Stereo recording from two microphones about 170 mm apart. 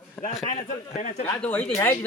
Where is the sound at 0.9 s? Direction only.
45° left (ahead or behind).